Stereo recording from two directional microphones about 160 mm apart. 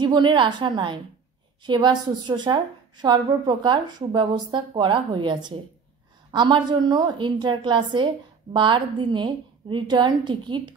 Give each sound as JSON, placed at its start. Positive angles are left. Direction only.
{"t": 0.0, "sound": "a woman's voice", "side_deg": -30}